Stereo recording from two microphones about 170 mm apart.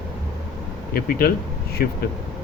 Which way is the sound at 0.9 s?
60° left (ahead or behind).